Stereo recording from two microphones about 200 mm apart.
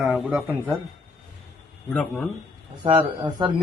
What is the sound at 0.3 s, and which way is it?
Speech, 10° right (ahead or behind).